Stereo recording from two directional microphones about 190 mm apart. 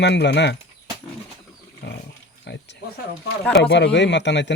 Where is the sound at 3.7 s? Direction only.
65° left (ahead or behind).